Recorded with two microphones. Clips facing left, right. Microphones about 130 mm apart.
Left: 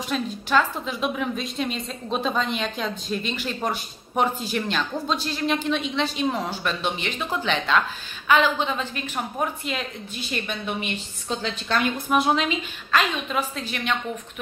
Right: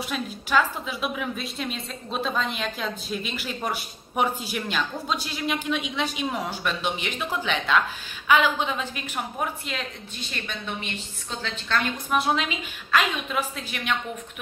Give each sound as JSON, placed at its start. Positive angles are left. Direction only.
{"t": 0.1, "sound": "a woman's voice", "side_deg": -10}
{"t": 9.7, "sound": "a woman's voice", "side_deg": 5}
{"t": 12.2, "sound": "a woman's voice", "side_deg": 0}